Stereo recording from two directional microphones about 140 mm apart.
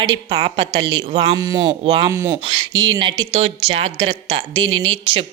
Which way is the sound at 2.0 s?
20° right (ahead or behind).